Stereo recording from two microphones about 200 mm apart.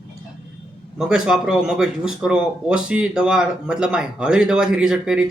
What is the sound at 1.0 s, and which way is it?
Speech, 5° right (ahead or behind).